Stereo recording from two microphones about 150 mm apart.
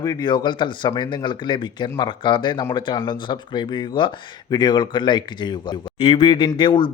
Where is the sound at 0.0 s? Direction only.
25° left (ahead or behind).